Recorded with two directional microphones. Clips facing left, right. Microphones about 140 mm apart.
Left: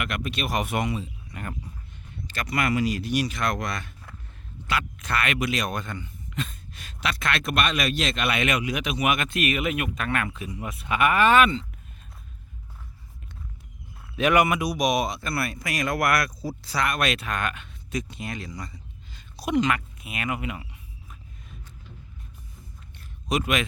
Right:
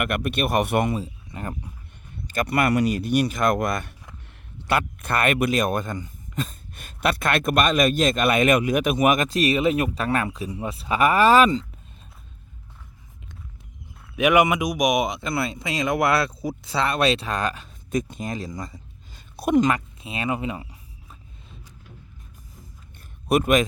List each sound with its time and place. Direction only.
0.0 s speech: 55° right (ahead or behind)
1.3 s speech: 30° right (ahead or behind)
2.3 s speech: 50° right (ahead or behind); by 11.6 s 35° right (ahead or behind)
14.2 s speech: 15° right (ahead or behind); by 17.7 s 35° right (ahead or behind)
17.9 s speech: 45° right (ahead or behind)
19.7 s speech: 30° right (ahead or behind)
23.3 s speech: 50° right (ahead or behind)